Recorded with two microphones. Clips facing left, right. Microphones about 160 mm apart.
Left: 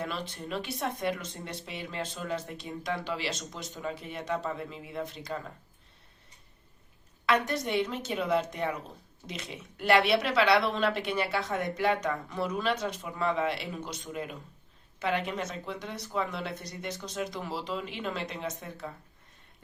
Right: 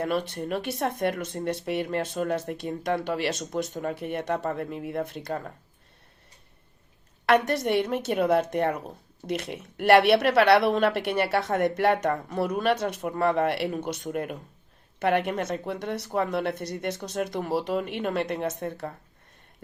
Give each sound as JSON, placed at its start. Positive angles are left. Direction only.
{"t": 0.0, "sound": "speech", "side_deg": -55}
{"t": 7.3, "sound": "speech", "side_deg": -60}